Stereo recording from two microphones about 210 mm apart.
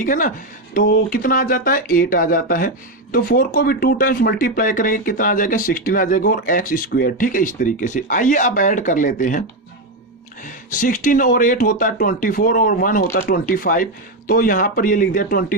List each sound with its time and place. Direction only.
0.0 s speech: 40° left (ahead or behind)
10.4 s speech: 40° left (ahead or behind)